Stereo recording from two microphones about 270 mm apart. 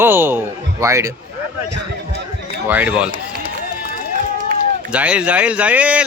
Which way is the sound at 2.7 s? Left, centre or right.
Centre.